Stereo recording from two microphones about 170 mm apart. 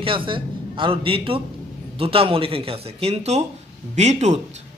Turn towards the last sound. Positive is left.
turn(degrees=-40)  # may be behind; listen again after turning